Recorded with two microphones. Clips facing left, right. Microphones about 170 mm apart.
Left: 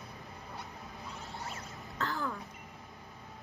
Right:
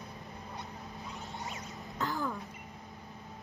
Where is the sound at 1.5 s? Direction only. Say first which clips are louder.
Right 1 dB; 15° right (ahead or behind).